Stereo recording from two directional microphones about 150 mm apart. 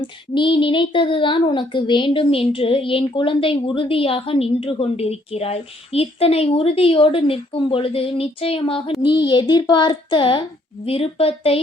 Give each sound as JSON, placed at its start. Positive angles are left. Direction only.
{"t": 0.0, "sound": "speech", "side_deg": 30}